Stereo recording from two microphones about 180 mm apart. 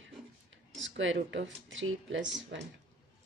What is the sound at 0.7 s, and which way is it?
Speech, 90° right.